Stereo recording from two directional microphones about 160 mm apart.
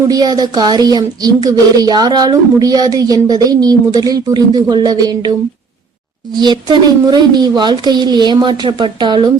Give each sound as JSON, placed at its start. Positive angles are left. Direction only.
{"t": 0.1, "sound": "speech", "side_deg": -25}
{"t": 6.3, "sound": "speech", "side_deg": -30}